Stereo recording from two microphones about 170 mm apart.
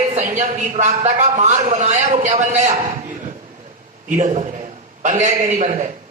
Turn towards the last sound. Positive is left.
turn(degrees=-40)  # may be behind; listen again after turning